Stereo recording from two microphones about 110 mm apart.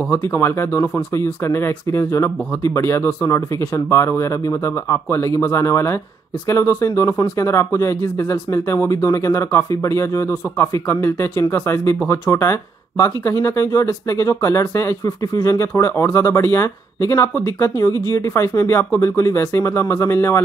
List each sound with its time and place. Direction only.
0.1 s speech: 20° left (ahead or behind)